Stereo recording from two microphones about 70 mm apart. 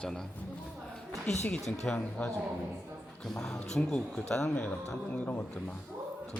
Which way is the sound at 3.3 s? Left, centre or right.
Centre.